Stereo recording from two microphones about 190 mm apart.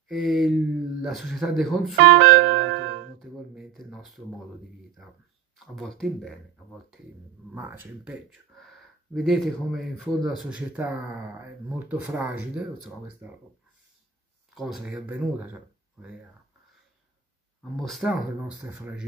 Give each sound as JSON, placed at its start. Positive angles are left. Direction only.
{"t": 0.1, "sound": "speech", "side_deg": 0}
{"t": 2.0, "sound": "music", "side_deg": -70}
{"t": 3.2, "sound": "a sound", "side_deg": 0}
{"t": 5.0, "sound": "speech", "side_deg": 0}
{"t": 7.5, "sound": "speech", "side_deg": -10}
{"t": 8.3, "sound": "speech", "side_deg": 0}
{"t": 14.5, "sound": "speech", "side_deg": 0}
{"t": 17.6, "sound": "speech", "side_deg": 0}